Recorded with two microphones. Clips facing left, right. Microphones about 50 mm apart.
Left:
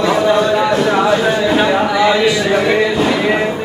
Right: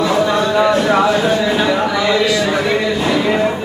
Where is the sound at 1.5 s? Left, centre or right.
Centre.